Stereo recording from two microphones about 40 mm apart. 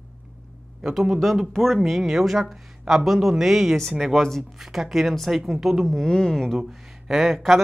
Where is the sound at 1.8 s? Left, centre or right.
Centre.